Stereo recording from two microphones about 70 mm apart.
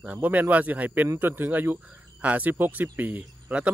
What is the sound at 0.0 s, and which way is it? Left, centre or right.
Speech, right.